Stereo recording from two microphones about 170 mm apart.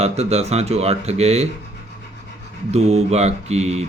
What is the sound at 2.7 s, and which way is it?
Speech, 40° right (ahead or behind).